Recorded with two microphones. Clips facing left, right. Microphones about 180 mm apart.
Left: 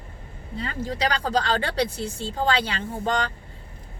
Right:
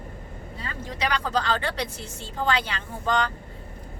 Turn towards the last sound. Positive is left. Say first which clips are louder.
# left 1 dB
turn(degrees=30)  # may be behind; listen again after turning